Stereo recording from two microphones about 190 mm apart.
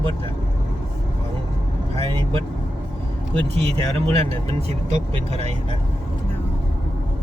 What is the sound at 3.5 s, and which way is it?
Speech, 30° right (ahead or behind).